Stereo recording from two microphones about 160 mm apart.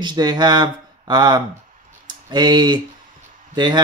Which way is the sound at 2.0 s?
25° right (ahead or behind).